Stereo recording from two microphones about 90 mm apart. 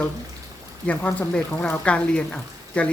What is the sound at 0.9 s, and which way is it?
Speech, 15° left (ahead or behind).